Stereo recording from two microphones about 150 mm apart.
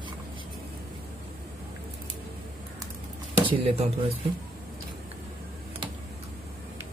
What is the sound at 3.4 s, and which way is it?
Speech, 35° right (ahead or behind).